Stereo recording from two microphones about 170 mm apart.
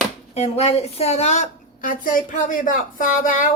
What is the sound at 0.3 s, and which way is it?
A woman's voice, 40° left (ahead or behind).